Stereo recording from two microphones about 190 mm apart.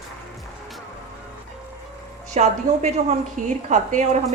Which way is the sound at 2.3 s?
35° right (ahead or behind).